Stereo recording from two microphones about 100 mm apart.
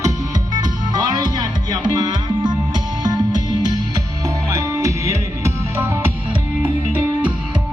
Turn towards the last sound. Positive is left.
turn(degrees=-25)  # may be behind; listen again after turning